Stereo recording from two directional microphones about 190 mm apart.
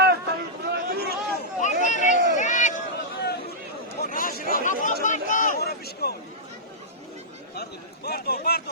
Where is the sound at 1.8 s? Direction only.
40° left (ahead or behind).